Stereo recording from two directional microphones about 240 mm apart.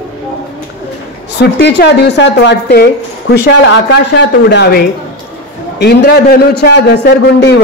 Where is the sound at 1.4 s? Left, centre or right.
Left.